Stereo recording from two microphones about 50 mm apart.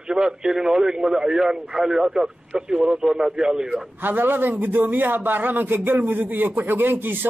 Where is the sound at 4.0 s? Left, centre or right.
Right.